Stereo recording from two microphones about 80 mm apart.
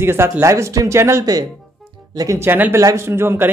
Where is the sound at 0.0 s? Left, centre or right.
Right.